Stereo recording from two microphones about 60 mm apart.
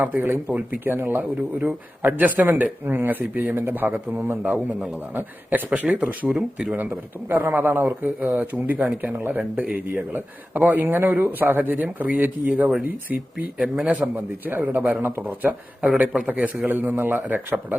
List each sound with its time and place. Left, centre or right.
0.0 s a man's voice: right
6.7 s a man's voice: right
9.4 s speech: right
13.8 s a man's voice: right